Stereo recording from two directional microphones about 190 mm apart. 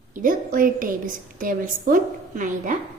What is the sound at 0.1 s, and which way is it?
A woman's voice, 45° right (ahead or behind).